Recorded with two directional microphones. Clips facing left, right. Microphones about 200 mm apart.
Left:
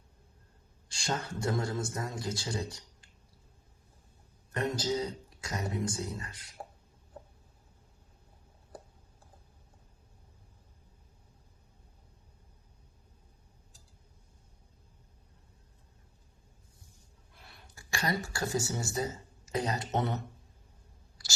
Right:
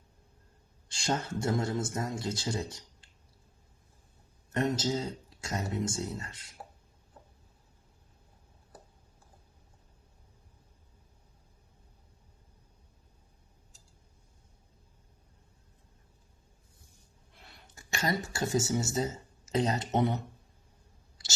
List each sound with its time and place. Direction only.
0.9 s a man's voice: 20° right (ahead or behind)
4.5 s a man's voice: 25° right (ahead or behind)
17.4 s a sound: 20° right (ahead or behind)
18.2 s a man's voice: 20° right (ahead or behind)